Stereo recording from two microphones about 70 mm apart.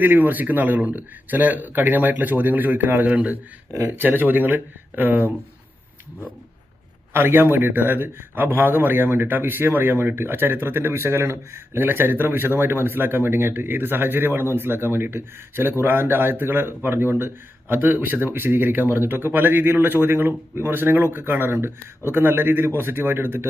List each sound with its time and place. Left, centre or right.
0.0 s speech: right
3.7 s speech: right
7.1 s speech: right